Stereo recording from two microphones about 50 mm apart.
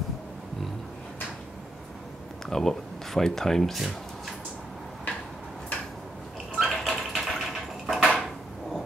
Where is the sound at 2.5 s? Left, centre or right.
Centre.